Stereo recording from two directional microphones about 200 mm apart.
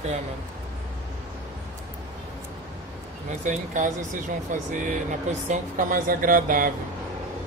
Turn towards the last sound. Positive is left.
turn(degrees=-45)  # may be behind; listen again after turning